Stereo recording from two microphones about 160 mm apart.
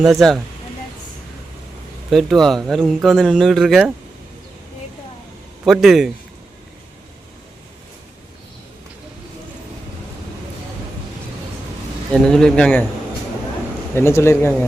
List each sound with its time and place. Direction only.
0.0 s a man's voice: centre (ahead or behind)
2.0 s a man's voice: centre (ahead or behind)
5.6 s a man's voice: centre (ahead or behind)
12.1 s a man's voice: 5° left (ahead or behind)
13.9 s speech: 15° left (ahead or behind)